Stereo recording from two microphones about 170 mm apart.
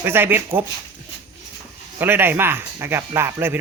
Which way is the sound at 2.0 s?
10° right (ahead or behind).